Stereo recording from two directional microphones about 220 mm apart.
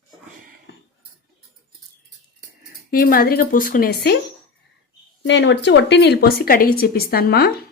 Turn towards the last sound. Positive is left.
turn(degrees=45)  # may be behind; listen again after turning